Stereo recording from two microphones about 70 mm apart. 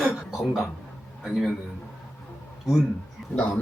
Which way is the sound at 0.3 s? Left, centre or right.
Centre.